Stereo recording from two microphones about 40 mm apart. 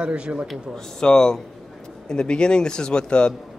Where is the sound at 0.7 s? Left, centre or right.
Centre.